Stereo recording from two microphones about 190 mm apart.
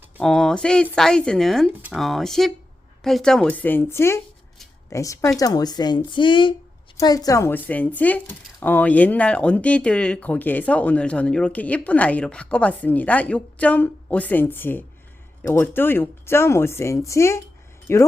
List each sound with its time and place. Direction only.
0.2 s speech: 5° left (ahead or behind)